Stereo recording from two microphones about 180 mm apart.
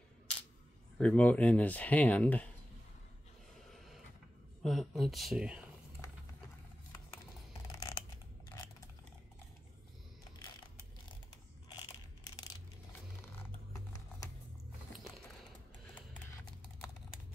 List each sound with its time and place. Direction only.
0.9 s speech: 5° left (ahead or behind)
3.7 s a sound: centre (ahead or behind)
4.6 s speech: centre (ahead or behind)
6.0 s a sound: 15° left (ahead or behind)
7.6 s scissors: 15° left (ahead or behind)
13.7 s typing: 20° left (ahead or behind)
14.9 s music: centre (ahead or behind)